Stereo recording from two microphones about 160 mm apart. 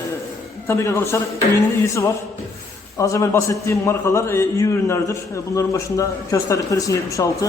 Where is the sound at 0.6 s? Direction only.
15° left (ahead or behind).